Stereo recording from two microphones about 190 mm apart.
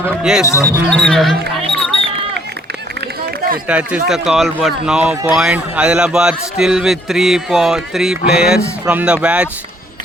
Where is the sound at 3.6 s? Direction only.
5° right (ahead or behind).